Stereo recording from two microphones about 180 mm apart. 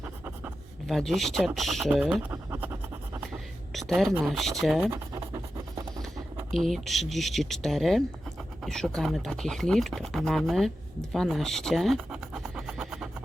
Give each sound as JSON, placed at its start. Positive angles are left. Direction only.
{"t": 0.0, "sound": "writing", "side_deg": -10}
{"t": 0.9, "sound": "speech", "side_deg": 0}
{"t": 3.7, "sound": "a woman's voice", "side_deg": 0}
{"t": 4.8, "sound": "scratch", "side_deg": -15}
{"t": 6.5, "sound": "speech", "side_deg": 0}
{"t": 11.1, "sound": "scratch", "side_deg": 0}